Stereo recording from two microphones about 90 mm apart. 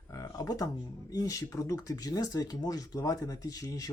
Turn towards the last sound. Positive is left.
turn(degrees=45)  # may be behind; listen again after turning